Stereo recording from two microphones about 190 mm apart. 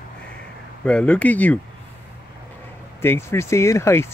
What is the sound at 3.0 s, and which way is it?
Speech, 15° left (ahead or behind).